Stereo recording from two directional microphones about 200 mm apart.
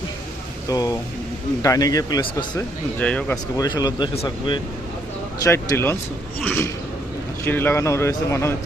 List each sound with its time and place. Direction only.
0.7 s speech: 20° left (ahead or behind)
3.0 s speech: 5° left (ahead or behind)
3.6 s speech: 20° left (ahead or behind)
5.4 s speech: 15° left (ahead or behind)